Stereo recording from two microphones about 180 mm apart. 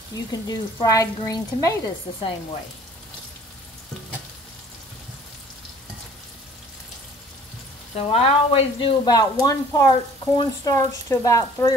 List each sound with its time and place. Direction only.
0.1 s speech: 20° left (ahead or behind)
7.9 s speech: 35° left (ahead or behind); by 11.7 s 15° left (ahead or behind)